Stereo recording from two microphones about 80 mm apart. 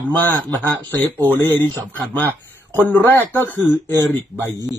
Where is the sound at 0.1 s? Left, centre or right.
Left.